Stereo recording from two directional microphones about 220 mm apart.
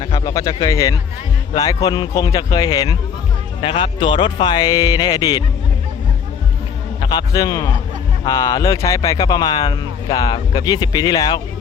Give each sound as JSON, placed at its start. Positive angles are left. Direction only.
{"t": 0.0, "sound": "speech", "side_deg": 20}
{"t": 7.0, "sound": "speech", "side_deg": 20}